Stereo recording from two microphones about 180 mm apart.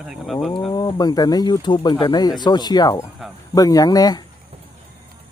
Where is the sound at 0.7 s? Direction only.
25° left (ahead or behind).